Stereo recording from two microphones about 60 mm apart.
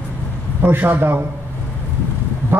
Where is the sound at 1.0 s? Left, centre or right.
Right.